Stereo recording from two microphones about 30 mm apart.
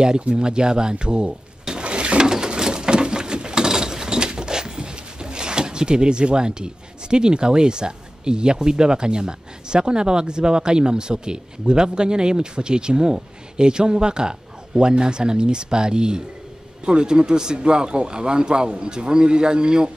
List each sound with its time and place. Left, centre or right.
0.2 s speech: right